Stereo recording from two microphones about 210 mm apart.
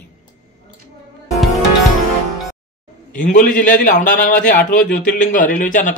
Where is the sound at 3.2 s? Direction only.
35° left (ahead or behind).